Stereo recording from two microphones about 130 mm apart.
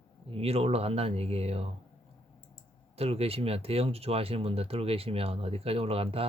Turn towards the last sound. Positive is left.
turn(degrees=-50)  # may be behind; listen again after turning